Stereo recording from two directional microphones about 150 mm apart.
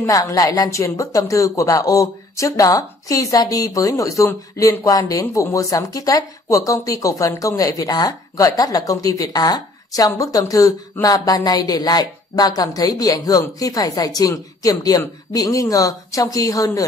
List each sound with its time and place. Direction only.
0.0 s speech: 20° left (ahead or behind)